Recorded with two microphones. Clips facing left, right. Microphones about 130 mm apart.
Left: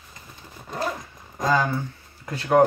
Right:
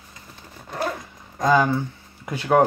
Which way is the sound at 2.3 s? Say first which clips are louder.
Even; 10° right (ahead or behind).